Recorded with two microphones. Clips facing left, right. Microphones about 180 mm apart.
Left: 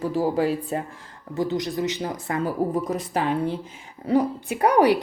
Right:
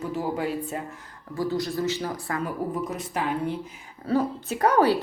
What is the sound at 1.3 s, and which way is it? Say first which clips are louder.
Speech: left 2 dB; 20° left (ahead or behind).